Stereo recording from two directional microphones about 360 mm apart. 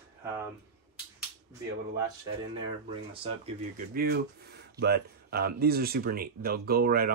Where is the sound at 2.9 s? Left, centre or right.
Centre.